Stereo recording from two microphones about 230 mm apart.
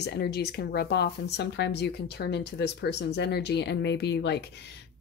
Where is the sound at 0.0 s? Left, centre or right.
Left.